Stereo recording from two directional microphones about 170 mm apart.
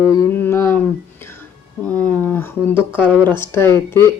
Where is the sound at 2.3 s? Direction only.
15° left (ahead or behind).